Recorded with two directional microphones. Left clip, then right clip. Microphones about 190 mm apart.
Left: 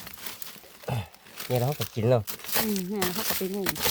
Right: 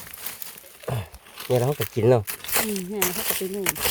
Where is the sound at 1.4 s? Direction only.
45° right (ahead or behind).